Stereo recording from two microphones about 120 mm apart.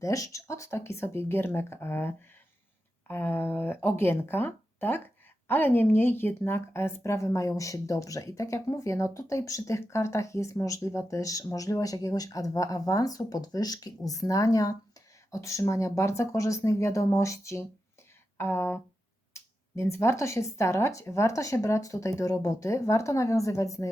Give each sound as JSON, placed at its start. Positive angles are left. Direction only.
{"t": 0.0, "sound": "speech", "side_deg": 30}